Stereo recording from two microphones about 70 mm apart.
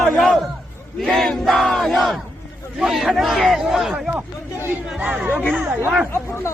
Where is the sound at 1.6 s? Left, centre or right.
Centre.